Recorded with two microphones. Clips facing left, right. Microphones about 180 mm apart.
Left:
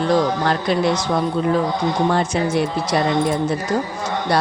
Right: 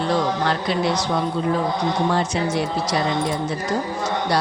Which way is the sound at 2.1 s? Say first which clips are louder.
Left 3 dB; 55° left (ahead or behind).